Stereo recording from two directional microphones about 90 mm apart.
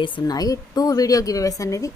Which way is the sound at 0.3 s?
45° left (ahead or behind).